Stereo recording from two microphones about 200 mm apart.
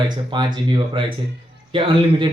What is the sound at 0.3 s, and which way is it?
A man's voice, 25° right (ahead or behind).